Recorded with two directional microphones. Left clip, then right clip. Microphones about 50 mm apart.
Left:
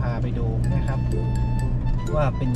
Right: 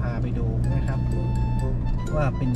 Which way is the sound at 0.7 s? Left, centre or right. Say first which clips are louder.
Left 2 dB; centre.